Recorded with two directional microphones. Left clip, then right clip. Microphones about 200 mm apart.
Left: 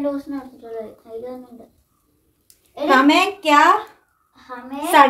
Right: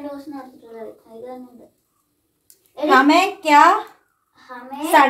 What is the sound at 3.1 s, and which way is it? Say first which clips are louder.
Speech: even; 20° left (ahead or behind).